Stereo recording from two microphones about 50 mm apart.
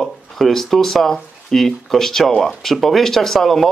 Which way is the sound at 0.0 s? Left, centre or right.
Centre.